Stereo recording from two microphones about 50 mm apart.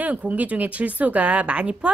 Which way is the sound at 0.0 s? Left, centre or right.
Right.